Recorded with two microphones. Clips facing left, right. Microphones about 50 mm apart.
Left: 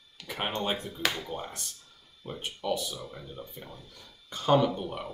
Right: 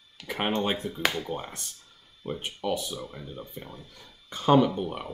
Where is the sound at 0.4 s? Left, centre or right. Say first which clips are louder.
Right 4 dB; right.